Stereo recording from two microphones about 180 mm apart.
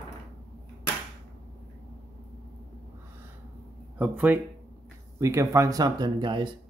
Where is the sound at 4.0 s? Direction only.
10° right (ahead or behind); by 6.6 s 25° right (ahead or behind).